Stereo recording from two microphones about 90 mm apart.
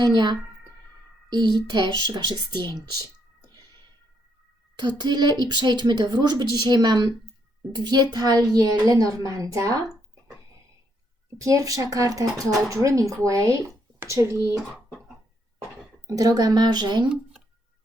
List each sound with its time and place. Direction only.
0.0 s a woman's voice: 50° right (ahead or behind)
1.3 s child singing: 55° right (ahead or behind)
4.8 s a woman's voice: 55° right (ahead or behind); by 9.8 s 35° right (ahead or behind)
11.3 s speech: 40° right (ahead or behind)
16.0 s a woman's voice: 40° right (ahead or behind)